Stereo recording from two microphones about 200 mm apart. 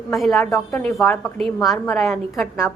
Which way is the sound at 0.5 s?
15° left (ahead or behind).